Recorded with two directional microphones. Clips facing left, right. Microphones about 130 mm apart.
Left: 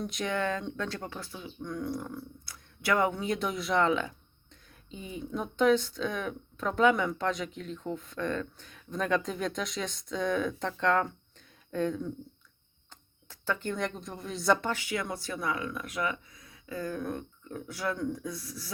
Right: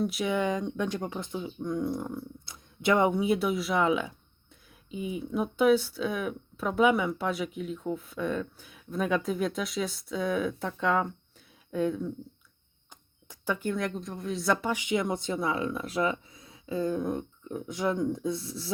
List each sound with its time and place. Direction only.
0.0 s speech: 5° right (ahead or behind)
13.2 s speech: 15° right (ahead or behind)
14.7 s speech: 20° right (ahead or behind)